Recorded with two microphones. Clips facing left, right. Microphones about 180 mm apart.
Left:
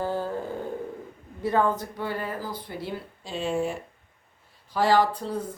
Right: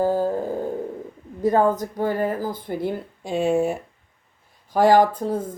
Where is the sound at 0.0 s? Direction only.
40° right (ahead or behind).